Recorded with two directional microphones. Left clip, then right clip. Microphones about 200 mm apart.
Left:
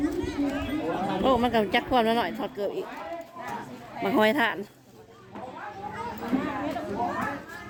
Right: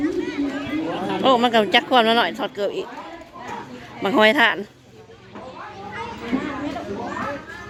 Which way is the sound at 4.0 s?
Centre (ahead or behind).